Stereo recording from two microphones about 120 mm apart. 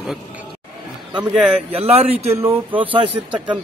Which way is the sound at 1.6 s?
55° right (ahead or behind).